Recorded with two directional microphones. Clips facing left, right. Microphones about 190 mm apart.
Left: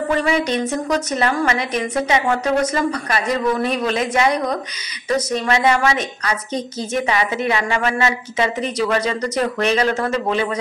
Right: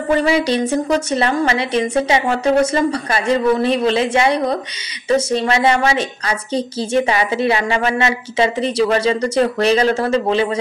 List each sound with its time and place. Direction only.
0.1 s a woman's voice: 30° right (ahead or behind)